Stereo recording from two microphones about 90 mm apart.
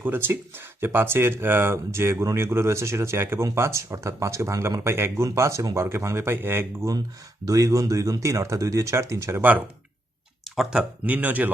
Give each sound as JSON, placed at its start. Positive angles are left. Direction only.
{"t": 0.0, "sound": "speech", "side_deg": -25}
{"t": 7.4, "sound": "speech", "side_deg": -40}
{"t": 10.5, "sound": "speech", "side_deg": -5}